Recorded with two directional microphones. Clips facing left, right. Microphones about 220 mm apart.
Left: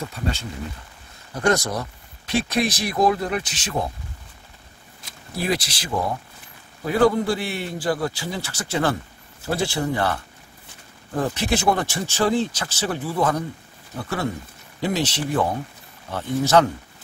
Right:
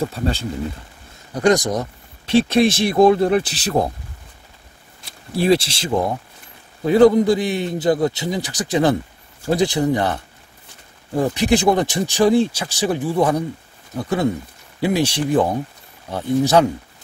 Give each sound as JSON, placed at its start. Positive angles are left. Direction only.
{"t": 0.0, "sound": "speech", "side_deg": -35}
{"t": 1.3, "sound": "speech", "side_deg": -15}
{"t": 5.3, "sound": "speech", "side_deg": -30}